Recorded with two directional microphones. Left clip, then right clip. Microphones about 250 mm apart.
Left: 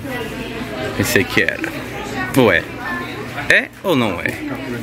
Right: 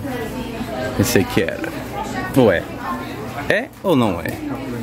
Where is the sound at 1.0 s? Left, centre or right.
Right.